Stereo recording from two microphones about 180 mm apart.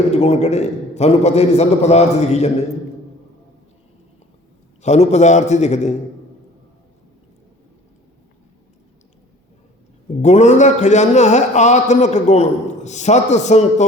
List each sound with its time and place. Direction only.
0.1 s a man's voice: 40° left (ahead or behind)
4.8 s a man's voice: 40° left (ahead or behind)
10.2 s a man's voice: 40° left (ahead or behind)